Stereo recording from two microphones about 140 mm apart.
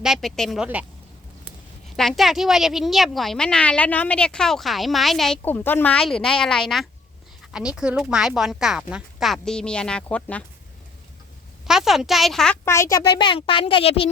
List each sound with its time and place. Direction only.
0.0 s a woman's voice: centre (ahead or behind)
2.0 s a woman's voice: centre (ahead or behind)
5.5 s a woman's voice: 15° left (ahead or behind)
11.6 s a woman's voice: 5° right (ahead or behind)
12.6 s a child's voice: 20° left (ahead or behind); by 14.1 s 40° left (ahead or behind)